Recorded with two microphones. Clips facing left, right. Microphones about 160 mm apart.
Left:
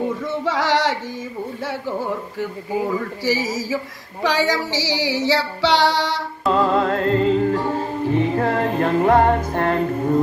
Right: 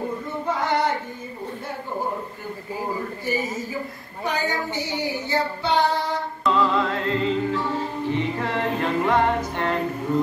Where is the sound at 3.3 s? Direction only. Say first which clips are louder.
Left 6 dB; 90° left.